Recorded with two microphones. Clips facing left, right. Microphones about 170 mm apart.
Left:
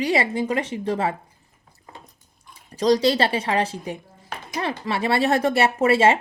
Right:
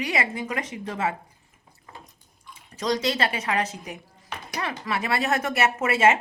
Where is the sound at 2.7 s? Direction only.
35° left (ahead or behind).